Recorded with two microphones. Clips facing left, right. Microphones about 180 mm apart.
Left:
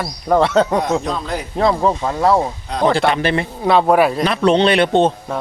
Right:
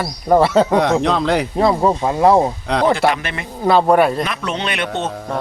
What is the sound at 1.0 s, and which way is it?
Speech, 90° right.